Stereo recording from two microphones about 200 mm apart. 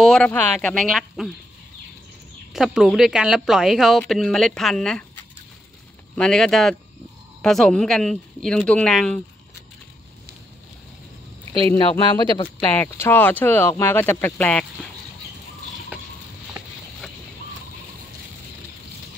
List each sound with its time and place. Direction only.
0.0 s speech: 5° left (ahead or behind)
2.5 s speech: centre (ahead or behind)
11.9 s speech: 25° left (ahead or behind)
12.4 s speech: 10° left (ahead or behind)